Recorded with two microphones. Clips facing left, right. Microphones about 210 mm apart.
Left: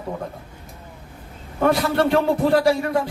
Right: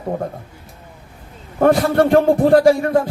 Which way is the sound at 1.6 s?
50° right (ahead or behind).